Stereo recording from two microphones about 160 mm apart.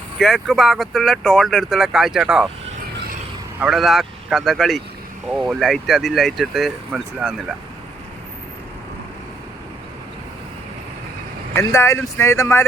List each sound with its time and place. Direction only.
0.2 s speech: centre (ahead or behind)
3.6 s speech: centre (ahead or behind)
11.5 s speech: 20° left (ahead or behind)